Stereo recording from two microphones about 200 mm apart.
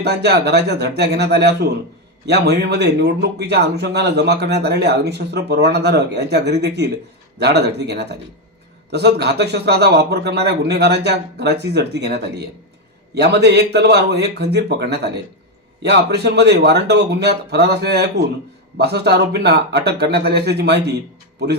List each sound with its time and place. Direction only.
0.0 s speech: 55° right (ahead or behind)